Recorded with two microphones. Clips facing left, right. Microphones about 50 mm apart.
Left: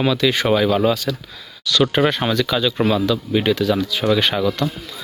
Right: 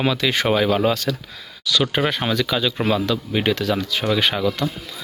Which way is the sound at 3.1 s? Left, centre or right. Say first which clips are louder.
Left 3 dB; right.